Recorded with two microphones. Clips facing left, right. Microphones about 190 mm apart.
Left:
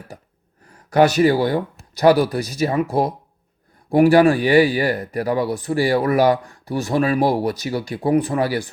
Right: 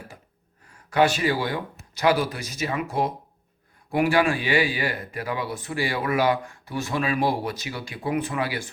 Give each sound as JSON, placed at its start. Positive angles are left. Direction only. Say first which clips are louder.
{"t": 0.9, "sound": "speech", "louder": "left 7 dB", "side_deg": 40}